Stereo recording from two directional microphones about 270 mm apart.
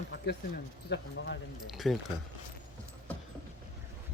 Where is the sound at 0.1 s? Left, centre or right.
Left.